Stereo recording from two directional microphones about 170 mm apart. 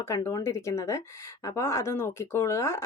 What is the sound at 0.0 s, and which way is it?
Speech, 15° left (ahead or behind).